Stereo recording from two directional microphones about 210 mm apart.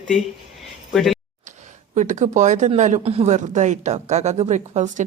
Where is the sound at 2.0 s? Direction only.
35° right (ahead or behind).